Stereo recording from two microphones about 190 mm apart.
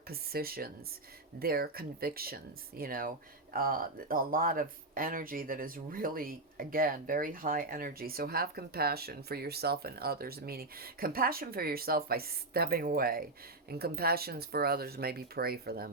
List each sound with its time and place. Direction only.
0.1 s speech: 55° right (ahead or behind)